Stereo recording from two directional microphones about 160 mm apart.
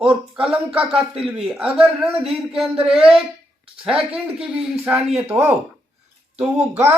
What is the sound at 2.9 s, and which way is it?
A man's voice, 5° right (ahead or behind).